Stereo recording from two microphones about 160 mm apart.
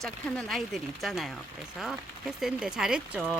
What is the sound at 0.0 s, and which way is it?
Speech, centre (ahead or behind).